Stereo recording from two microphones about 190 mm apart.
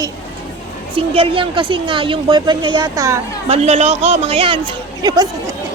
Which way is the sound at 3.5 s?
35° right (ahead or behind).